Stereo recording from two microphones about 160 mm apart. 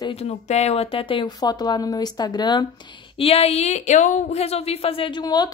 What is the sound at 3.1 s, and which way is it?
Speech, 40° left (ahead or behind).